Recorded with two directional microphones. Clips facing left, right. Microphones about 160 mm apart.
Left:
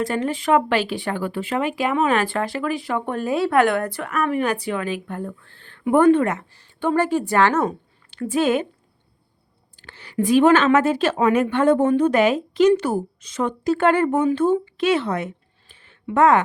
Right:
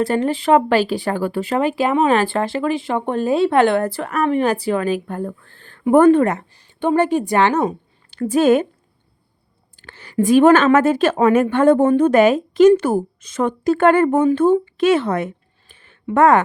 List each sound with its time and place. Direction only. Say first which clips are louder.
0.0 s speech: right 4 dB; 35° right (ahead or behind)
6.5 s a woman's voice: right 3 dB; 20° right (ahead or behind)
8.1 s speech: right 6 dB; 40° right (ahead or behind)
9.7 s a woman's voice: right 4 dB; 50° right (ahead or behind)